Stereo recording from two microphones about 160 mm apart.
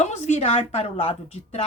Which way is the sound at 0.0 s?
45° left (ahead or behind).